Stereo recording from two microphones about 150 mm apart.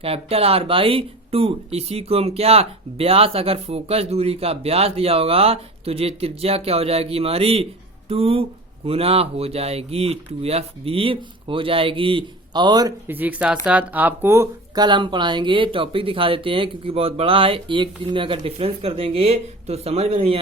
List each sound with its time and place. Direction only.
0.0 s speech: 40° right (ahead or behind)
13.1 s speech: 10° right (ahead or behind)
14.8 s speech: 30° right (ahead or behind)